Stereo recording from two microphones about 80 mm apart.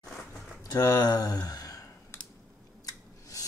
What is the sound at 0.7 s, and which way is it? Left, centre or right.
Speech, left.